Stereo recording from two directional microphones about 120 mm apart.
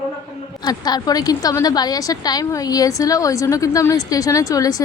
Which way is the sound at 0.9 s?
30° left (ahead or behind).